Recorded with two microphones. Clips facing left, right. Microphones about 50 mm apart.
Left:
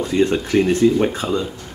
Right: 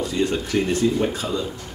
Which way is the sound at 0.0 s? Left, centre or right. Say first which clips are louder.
Left 5 dB; left.